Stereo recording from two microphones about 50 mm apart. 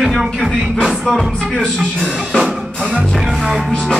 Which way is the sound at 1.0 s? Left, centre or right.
Centre.